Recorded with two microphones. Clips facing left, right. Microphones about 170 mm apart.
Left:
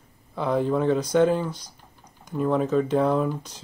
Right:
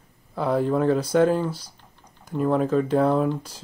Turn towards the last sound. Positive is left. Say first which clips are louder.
# right 1 dB
turn(degrees=0)  # may be behind; listen again after turning